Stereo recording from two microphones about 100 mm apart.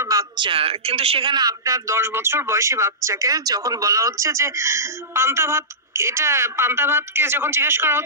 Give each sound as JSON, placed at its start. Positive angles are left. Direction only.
{"t": 0.0, "sound": "a sound", "side_deg": -35}
{"t": 0.4, "sound": "speech", "side_deg": -65}
{"t": 1.3, "sound": "speech", "side_deg": -40}